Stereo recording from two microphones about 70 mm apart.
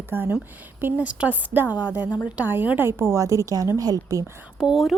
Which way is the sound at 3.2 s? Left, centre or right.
Right.